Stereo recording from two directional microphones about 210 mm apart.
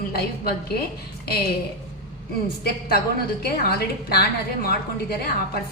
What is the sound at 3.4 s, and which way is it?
A woman's voice, 50° left (ahead or behind).